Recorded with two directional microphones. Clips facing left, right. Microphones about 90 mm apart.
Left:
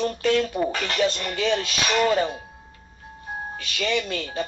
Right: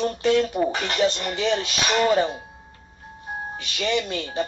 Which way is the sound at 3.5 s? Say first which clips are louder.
Right 1 dB; 20° right (ahead or behind).